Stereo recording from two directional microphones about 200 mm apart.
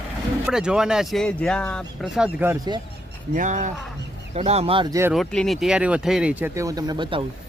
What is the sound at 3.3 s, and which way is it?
Speech, 35° right (ahead or behind).